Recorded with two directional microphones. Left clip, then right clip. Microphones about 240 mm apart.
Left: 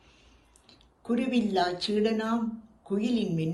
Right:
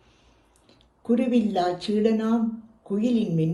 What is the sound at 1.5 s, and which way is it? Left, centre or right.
Speech, centre.